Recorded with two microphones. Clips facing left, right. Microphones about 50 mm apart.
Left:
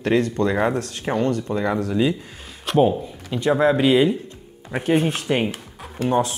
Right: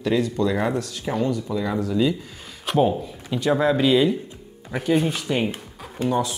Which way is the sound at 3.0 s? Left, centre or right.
Centre.